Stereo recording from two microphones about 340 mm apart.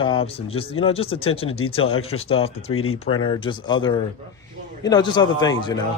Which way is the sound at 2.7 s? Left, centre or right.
Left.